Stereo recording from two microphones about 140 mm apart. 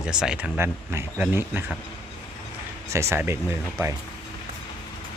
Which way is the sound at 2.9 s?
20° right (ahead or behind).